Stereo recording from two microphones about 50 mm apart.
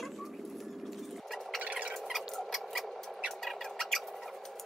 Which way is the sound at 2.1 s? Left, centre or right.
Centre.